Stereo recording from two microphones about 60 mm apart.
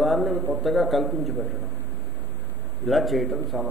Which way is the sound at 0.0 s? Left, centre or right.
Centre.